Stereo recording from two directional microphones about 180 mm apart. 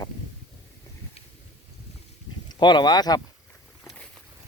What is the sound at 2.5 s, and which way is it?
Speech, 25° left (ahead or behind).